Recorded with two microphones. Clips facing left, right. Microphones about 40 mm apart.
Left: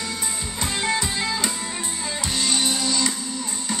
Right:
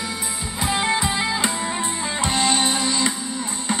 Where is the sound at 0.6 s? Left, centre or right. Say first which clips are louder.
Right 3 dB; centre.